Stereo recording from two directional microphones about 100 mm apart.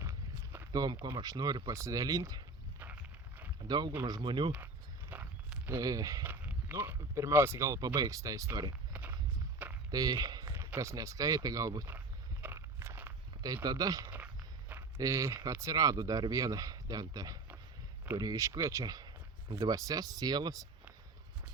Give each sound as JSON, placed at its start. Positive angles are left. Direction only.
{"t": 0.0, "sound": "walk", "side_deg": -25}
{"t": 0.7, "sound": "speech", "side_deg": -35}
{"t": 2.7, "sound": "a sound", "side_deg": -15}
{"t": 3.7, "sound": "speech", "side_deg": -45}
{"t": 4.5, "sound": "walk", "side_deg": -15}
{"t": 5.7, "sound": "speech", "side_deg": -40}
{"t": 6.2, "sound": "speech", "side_deg": -20}
{"t": 8.9, "sound": "walk", "side_deg": -15}
{"t": 9.9, "sound": "speech", "side_deg": -40}
{"t": 11.9, "sound": "a sound", "side_deg": -20}
{"t": 12.5, "sound": "walk", "side_deg": -25}
{"t": 13.4, "sound": "speech", "side_deg": -40}